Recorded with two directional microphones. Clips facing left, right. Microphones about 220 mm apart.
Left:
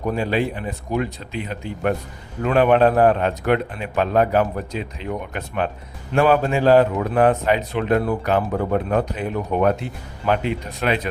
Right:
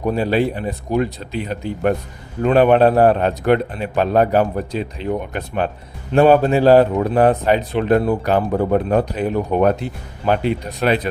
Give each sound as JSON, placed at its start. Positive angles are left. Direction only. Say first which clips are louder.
{"t": 0.0, "sound": "a man's voice", "louder": "right 4 dB", "side_deg": -35}